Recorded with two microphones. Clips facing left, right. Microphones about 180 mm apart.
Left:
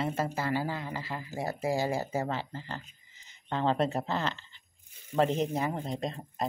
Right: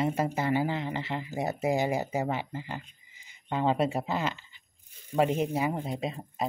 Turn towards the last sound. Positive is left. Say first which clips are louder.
# right 1 dB
turn(degrees=-5)  # may be behind; listen again after turning